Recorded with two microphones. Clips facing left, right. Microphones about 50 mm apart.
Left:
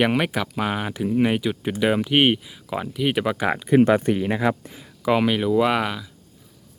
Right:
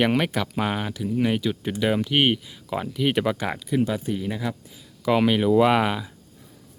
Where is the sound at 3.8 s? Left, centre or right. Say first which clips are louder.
Left 8 dB; left.